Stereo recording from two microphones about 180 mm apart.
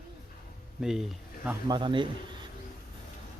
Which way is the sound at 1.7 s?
25° right (ahead or behind).